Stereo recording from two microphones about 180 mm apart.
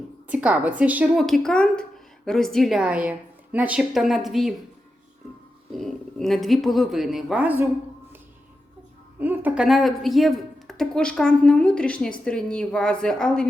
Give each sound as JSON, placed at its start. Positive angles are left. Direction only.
{"t": 0.3, "sound": "a woman's voice", "side_deg": -5}
{"t": 5.7, "sound": "a woman's voice", "side_deg": 0}
{"t": 9.1, "sound": "a woman's voice", "side_deg": -10}